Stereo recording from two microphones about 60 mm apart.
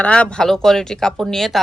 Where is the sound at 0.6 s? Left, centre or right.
Centre.